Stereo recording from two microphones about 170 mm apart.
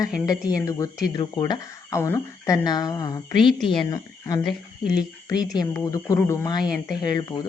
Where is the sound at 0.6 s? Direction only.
20° left (ahead or behind).